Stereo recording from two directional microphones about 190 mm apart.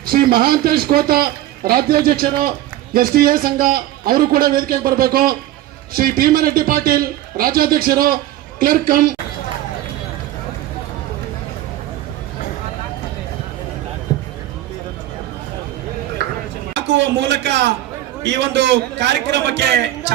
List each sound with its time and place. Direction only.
0.0 s a man's voice: 50° right (ahead or behind)
16.7 s a man's voice: 70° right (ahead or behind)